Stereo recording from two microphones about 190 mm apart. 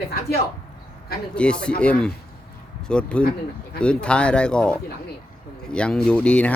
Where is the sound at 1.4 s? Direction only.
5° left (ahead or behind).